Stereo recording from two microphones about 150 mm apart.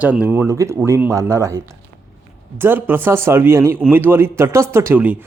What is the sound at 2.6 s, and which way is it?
A man's voice, 15° right (ahead or behind).